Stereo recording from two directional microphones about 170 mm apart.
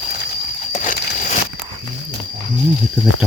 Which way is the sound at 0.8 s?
50° left (ahead or behind).